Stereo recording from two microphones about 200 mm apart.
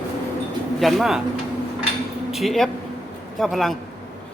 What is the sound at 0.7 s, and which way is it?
Speech, centre (ahead or behind).